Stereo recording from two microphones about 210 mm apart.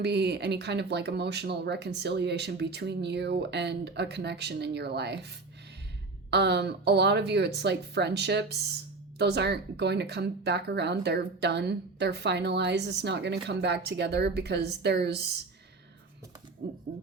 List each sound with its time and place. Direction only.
0.0 s speech: 50° right (ahead or behind)
6.3 s speech: 55° right (ahead or behind)
16.6 s speech: 50° right (ahead or behind)